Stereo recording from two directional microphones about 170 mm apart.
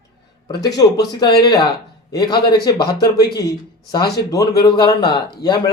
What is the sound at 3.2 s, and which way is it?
Speech, 70° left (ahead or behind).